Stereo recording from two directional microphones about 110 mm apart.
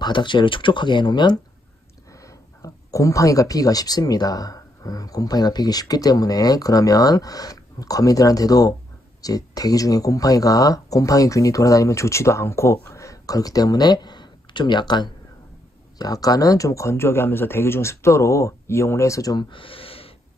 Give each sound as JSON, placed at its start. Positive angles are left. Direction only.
{"t": 0.0, "sound": "speech", "side_deg": 45}
{"t": 2.1, "sound": "speech", "side_deg": 30}
{"t": 19.5, "sound": "gasp", "side_deg": 55}